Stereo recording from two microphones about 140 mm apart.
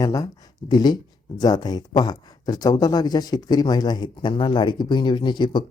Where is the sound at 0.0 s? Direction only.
25° left (ahead or behind).